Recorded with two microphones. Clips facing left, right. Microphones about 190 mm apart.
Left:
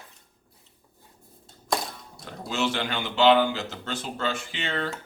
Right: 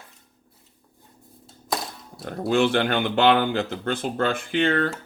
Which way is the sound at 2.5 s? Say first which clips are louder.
Right 8 dB; 55° right (ahead or behind).